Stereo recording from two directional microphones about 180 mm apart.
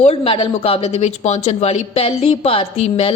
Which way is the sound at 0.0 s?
35° left (ahead or behind).